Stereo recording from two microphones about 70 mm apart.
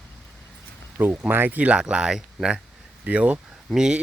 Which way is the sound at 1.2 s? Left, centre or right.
Right.